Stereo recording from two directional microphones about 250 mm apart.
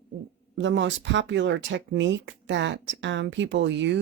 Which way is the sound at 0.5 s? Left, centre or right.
Right.